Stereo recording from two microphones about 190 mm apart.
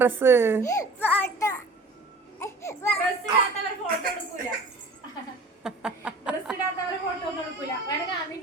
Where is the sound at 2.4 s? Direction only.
15° left (ahead or behind).